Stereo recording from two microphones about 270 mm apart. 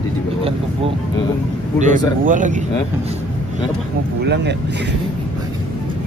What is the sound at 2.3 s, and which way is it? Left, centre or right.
Speech, right.